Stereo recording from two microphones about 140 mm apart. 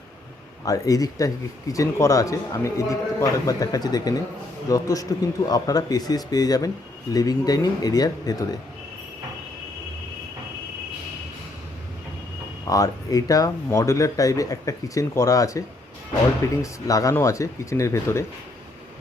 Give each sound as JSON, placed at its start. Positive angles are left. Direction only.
{"t": 0.6, "sound": "speech", "side_deg": 25}
{"t": 12.6, "sound": "speech", "side_deg": 25}